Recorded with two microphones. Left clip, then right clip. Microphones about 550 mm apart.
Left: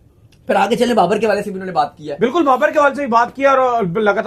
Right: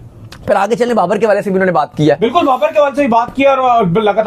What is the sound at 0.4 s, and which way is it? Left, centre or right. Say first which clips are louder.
Speech: right 3 dB; right.